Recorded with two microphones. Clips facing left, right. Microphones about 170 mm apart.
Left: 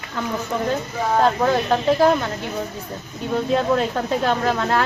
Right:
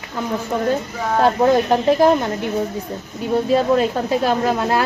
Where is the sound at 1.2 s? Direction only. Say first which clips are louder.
Right 6 dB; 15° right (ahead or behind).